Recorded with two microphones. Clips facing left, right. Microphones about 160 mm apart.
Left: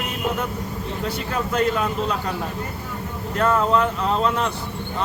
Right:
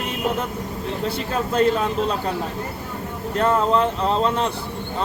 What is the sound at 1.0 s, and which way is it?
Speech, 30° right (ahead or behind).